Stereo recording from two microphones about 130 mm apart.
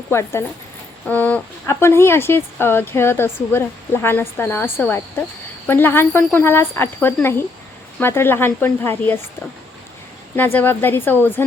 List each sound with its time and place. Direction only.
0.1 s a woman's voice: 20° left (ahead or behind)
10.3 s a woman's voice: 15° left (ahead or behind)